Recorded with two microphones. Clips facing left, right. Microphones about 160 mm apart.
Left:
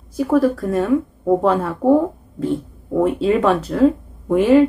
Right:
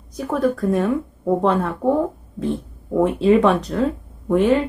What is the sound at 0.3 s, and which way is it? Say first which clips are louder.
Speech: left 2 dB; centre (ahead or behind).